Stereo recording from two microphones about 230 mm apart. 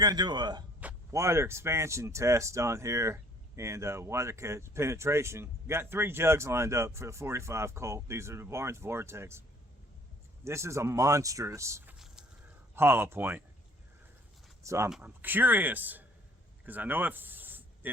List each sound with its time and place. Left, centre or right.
0.0 s speech: centre
10.4 s speech: centre
14.6 s speech: centre